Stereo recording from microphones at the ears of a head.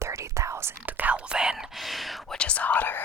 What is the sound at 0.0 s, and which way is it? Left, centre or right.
Whispering, right.